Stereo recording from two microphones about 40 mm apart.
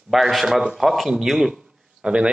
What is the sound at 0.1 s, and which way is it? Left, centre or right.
A man's voice, centre.